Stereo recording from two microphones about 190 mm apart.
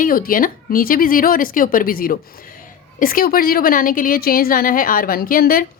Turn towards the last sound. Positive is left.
turn(degrees=50)  # may be behind; listen again after turning